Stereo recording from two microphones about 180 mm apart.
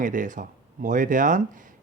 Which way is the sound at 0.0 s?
45° right (ahead or behind).